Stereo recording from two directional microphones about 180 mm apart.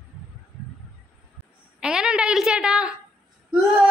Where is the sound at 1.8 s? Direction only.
5° right (ahead or behind).